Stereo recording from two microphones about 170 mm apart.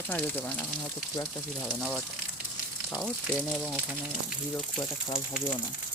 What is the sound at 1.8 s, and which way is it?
Speech, 5° left (ahead or behind).